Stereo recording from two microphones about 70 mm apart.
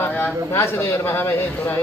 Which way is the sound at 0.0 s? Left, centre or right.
Left.